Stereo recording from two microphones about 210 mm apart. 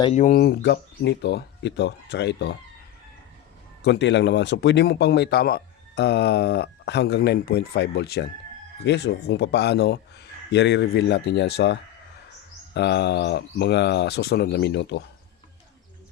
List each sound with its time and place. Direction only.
0.0 s speech: 35° left (ahead or behind)
0.3 s a man's voice: 50° left (ahead or behind)
3.8 s a man's voice: 55° left (ahead or behind)